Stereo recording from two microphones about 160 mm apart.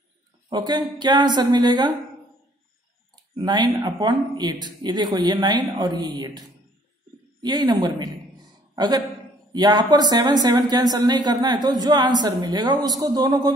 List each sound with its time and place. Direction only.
0.5 s speech: 25° right (ahead or behind)
3.2 s speech: 25° right (ahead or behind)
7.4 s speech: 25° right (ahead or behind)